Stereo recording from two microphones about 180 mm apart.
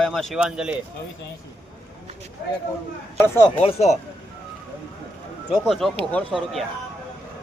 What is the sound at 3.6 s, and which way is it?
Speech, 35° left (ahead or behind).